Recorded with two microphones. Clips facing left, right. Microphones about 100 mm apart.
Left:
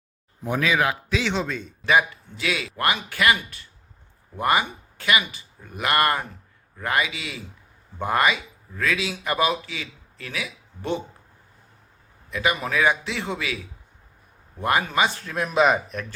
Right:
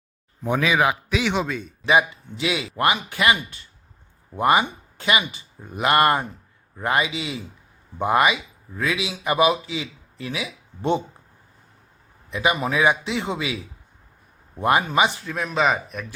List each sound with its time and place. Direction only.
0.5 s a man's voice: 15° right (ahead or behind)
1.9 s speech: 20° right (ahead or behind)
12.3 s speech: 20° right (ahead or behind)
14.6 s speech: 20° right (ahead or behind)
15.2 s speech: centre (ahead or behind)